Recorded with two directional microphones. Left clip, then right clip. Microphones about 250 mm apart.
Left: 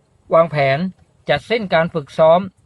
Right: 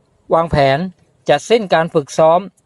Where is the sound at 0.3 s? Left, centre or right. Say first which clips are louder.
Right 1 dB; centre.